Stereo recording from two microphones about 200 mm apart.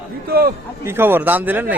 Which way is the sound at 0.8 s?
10° right (ahead or behind).